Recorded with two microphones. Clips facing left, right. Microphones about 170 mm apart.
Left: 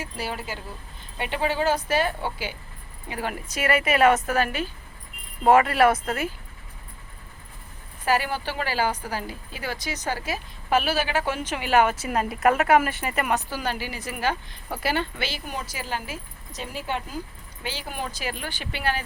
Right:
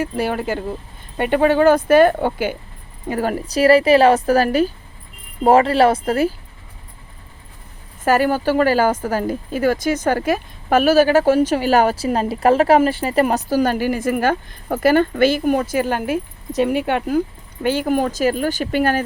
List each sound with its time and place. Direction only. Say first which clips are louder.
0.0 s speech: right 11 dB; 55° right (ahead or behind)
3.1 s a woman's voice: right 10 dB; 40° right (ahead or behind)
8.0 s speech: right 9 dB; 45° right (ahead or behind)